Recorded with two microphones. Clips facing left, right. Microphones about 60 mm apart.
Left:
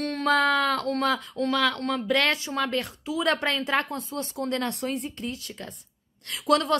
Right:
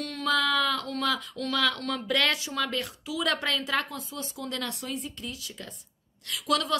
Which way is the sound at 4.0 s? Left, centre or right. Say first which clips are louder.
Left 6 dB; left.